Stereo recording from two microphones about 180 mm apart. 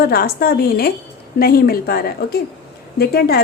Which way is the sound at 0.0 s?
55° left (ahead or behind).